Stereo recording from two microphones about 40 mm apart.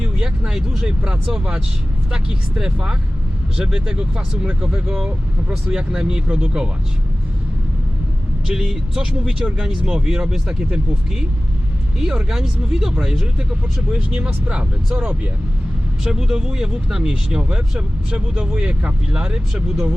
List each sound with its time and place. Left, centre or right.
0.2 s speech: centre
2.6 s speech: centre
8.4 s speech: centre
11.9 s speech: centre
13.9 s speech: right
16.0 s speech: centre